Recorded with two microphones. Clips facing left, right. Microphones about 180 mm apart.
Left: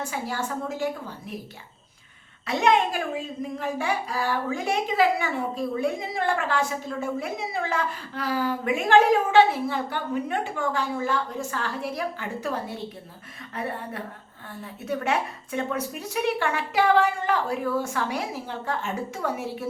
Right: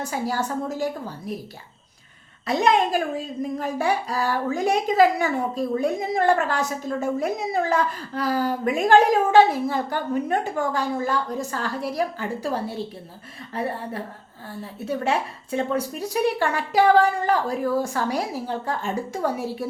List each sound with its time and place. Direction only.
0.0 s a woman's voice: 40° right (ahead or behind)
2.5 s a woman's voice: 35° right (ahead or behind)